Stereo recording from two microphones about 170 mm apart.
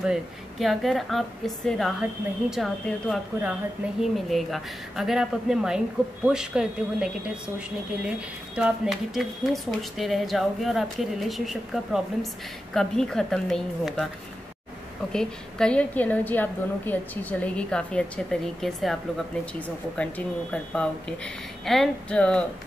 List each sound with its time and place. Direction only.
0.0 s a woman's voice: centre (ahead or behind)
8.5 s a woman's voice: 5° right (ahead or behind)
15.1 s a woman's voice: 5° left (ahead or behind)
20.0 s a woman's voice: 5° left (ahead or behind)